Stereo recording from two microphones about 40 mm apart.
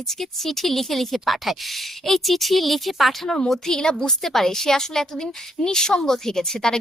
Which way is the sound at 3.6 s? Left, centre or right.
Centre.